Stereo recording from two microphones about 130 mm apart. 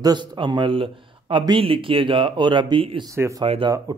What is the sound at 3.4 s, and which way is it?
Speech, 45° right (ahead or behind).